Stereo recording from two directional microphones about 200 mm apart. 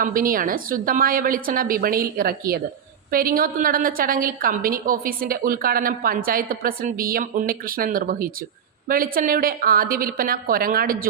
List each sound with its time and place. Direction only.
0.0 s a woman's voice: 45° right (ahead or behind)